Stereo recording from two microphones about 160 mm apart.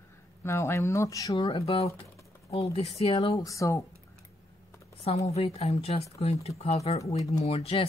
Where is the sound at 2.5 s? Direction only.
40° left (ahead or behind).